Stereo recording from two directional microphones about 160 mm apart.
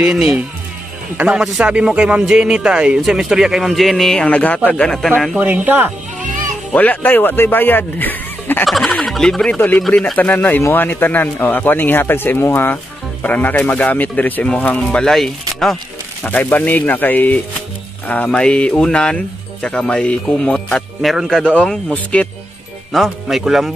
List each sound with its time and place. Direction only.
0.0 s speech: 5° right (ahead or behind)
6.7 s speech: 10° left (ahead or behind)
8.6 s speech: centre (ahead or behind)